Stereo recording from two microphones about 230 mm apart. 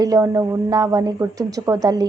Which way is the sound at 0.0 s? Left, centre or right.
Centre.